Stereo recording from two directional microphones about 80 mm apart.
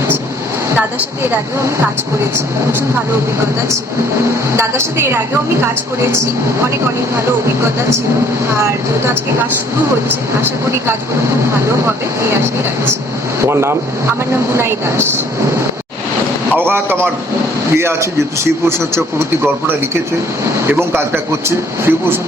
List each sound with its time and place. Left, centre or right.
1.3 s a woman's voice: right
4.5 s a woman's voice: right
7.8 s a woman's voice: right
10.4 s a woman's voice: right
13.4 s a woman's voice: right
16.6 s a woman's voice: right
21.4 s speech: right